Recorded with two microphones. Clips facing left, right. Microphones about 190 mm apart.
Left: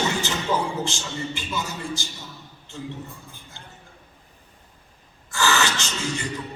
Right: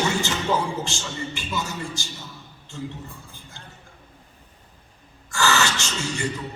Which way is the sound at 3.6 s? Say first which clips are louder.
Right 2 dB; 20° left (ahead or behind).